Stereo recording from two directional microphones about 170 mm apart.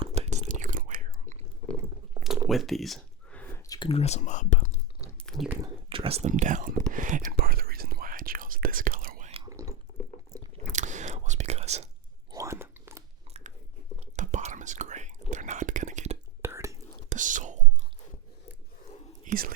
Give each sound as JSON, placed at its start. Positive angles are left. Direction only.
{"t": 0.0, "sound": "whispering", "side_deg": -40}
{"t": 2.1, "sound": "a sound", "side_deg": -5}
{"t": 3.7, "sound": "speech", "side_deg": 30}
{"t": 5.2, "sound": "a sound", "side_deg": 0}
{"t": 5.6, "sound": "speech", "side_deg": -30}
{"t": 6.9, "sound": "whispering", "side_deg": -50}
{"t": 10.3, "sound": "chewing", "side_deg": -20}
{"t": 10.8, "sound": "whispering", "side_deg": -45}
{"t": 12.3, "sound": "biting", "side_deg": -15}
{"t": 14.2, "sound": "whispering", "side_deg": -45}
{"t": 16.4, "sound": "whispering", "side_deg": -15}
{"t": 17.1, "sound": "whispering", "side_deg": -50}
{"t": 19.2, "sound": "whispering", "side_deg": -55}